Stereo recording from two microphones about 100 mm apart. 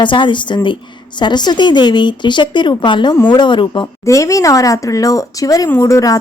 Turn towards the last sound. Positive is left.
turn(degrees=35)  # may be behind; listen again after turning